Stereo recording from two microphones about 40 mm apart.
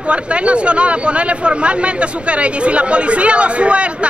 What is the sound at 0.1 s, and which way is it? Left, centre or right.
Speech, right.